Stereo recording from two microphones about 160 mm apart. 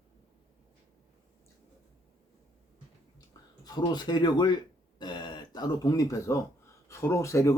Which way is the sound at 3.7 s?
25° left (ahead or behind).